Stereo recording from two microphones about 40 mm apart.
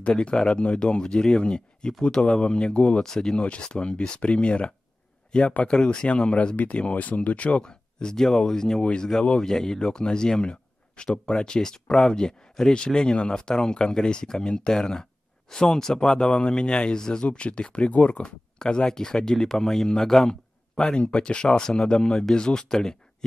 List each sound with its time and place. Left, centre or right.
0.0 s speech: left
7.6 s speech: centre
18.6 s speech: centre